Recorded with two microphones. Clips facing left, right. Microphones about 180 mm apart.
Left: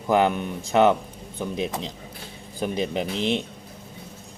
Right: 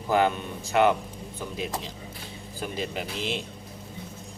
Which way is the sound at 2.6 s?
20° left (ahead or behind).